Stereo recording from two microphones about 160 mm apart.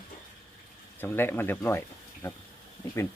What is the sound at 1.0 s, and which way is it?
Speech, 15° left (ahead or behind).